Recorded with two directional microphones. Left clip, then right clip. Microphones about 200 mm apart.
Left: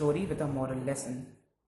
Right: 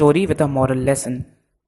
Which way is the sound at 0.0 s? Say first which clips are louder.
Right 15 dB; 45° right (ahead or behind).